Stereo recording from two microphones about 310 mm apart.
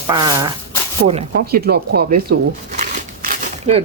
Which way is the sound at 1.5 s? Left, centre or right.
Right.